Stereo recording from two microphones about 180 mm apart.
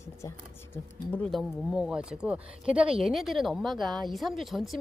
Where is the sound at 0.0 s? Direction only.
15° left (ahead or behind).